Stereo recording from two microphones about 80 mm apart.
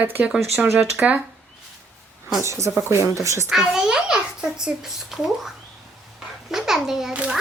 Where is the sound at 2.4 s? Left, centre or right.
Right.